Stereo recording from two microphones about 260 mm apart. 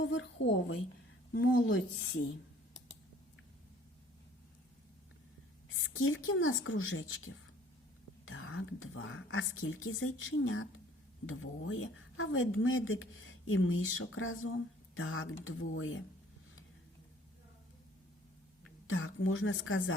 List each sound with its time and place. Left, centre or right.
0.0 s a sound: left
1.3 s a woman's voice: left
5.6 s a woman's voice: left
18.9 s a woman's voice: left